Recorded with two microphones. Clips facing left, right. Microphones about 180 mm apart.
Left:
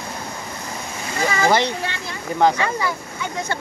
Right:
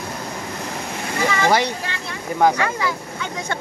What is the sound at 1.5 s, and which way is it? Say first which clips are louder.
Speech: left 1 dB; 10° right (ahead or behind).